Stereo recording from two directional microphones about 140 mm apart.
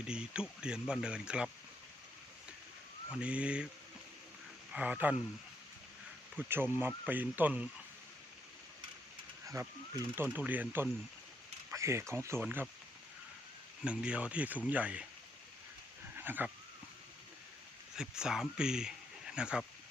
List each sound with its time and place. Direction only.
0.0 s speech: 5° right (ahead or behind)
3.1 s speech: 10° right (ahead or behind)
4.7 s a man's voice: 10° right (ahead or behind)
6.3 s speech: 15° right (ahead or behind)
9.6 s speech: 25° right (ahead or behind)
10.2 s speech: 10° right (ahead or behind)
13.8 s speech: 5° right (ahead or behind)
16.1 s a sound: 15° right (ahead or behind)
17.9 s speech: 5° right (ahead or behind)